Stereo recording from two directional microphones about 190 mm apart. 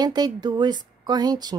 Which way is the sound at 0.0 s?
20° right (ahead or behind).